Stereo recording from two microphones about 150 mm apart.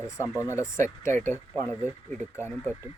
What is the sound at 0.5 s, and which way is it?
Speech, 20° left (ahead or behind).